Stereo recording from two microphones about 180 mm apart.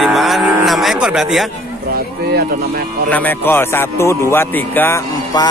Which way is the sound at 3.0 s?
10° left (ahead or behind).